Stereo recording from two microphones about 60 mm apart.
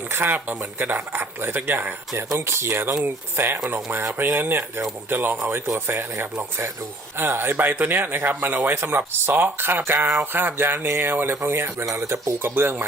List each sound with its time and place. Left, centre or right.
0.1 s speech: right
2.5 s speech: right